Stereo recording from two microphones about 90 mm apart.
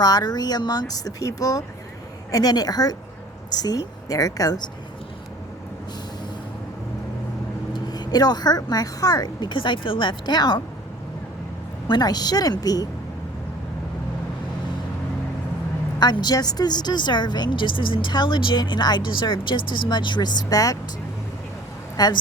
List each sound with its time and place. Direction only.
0.0 s speech: 45° left (ahead or behind)
7.7 s speech: 50° left (ahead or behind)
11.9 s speech: 50° left (ahead or behind)
16.0 s a woman's voice: 55° left (ahead or behind)
21.9 s a woman's voice: 50° left (ahead or behind)